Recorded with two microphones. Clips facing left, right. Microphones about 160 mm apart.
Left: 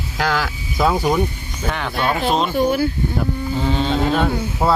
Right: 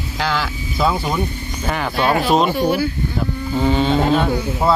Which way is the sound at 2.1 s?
45° right (ahead or behind).